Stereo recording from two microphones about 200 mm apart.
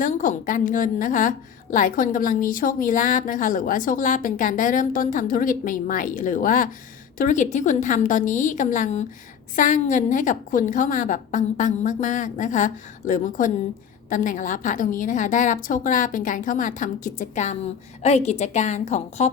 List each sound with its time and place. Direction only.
0.0 s a woman's voice: 40° left (ahead or behind)